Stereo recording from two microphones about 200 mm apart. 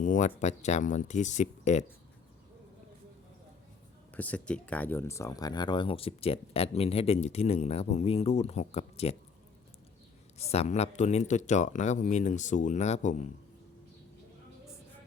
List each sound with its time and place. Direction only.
0.0 s speech: 40° left (ahead or behind)
4.1 s speech: 5° left (ahead or behind); by 9.1 s 30° left (ahead or behind)
10.3 s speech: 30° left (ahead or behind)